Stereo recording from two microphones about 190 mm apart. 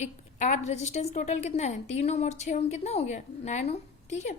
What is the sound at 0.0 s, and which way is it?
A woman's voice, 40° left (ahead or behind).